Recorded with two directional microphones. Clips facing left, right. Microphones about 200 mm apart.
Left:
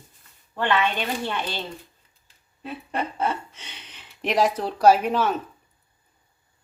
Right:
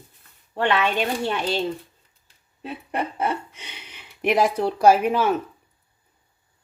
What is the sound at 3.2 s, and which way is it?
Speech, 10° right (ahead or behind).